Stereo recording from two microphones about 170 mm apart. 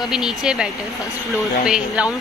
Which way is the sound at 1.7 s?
5° right (ahead or behind).